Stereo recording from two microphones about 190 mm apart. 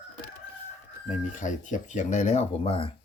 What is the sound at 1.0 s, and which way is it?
Speech, 40° left (ahead or behind).